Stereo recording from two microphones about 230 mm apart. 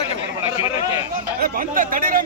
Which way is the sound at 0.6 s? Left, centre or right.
Centre.